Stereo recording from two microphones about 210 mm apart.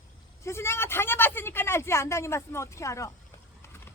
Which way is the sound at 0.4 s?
10° left (ahead or behind).